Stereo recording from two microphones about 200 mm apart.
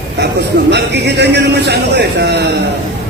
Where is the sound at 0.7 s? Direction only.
60° right (ahead or behind).